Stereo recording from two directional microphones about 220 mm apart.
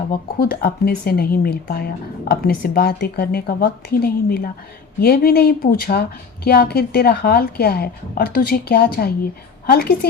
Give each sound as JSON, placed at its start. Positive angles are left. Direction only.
{"t": 0.1, "sound": "speech", "side_deg": 45}